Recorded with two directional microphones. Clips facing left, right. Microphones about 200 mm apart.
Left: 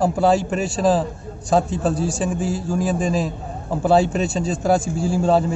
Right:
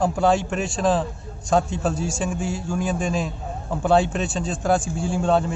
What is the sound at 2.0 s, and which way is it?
Speech, 35° left (ahead or behind).